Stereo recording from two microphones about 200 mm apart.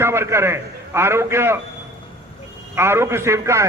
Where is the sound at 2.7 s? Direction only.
10° right (ahead or behind).